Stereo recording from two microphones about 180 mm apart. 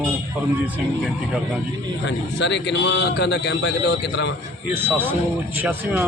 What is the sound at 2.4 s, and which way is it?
A man's voice, 70° left (ahead or behind).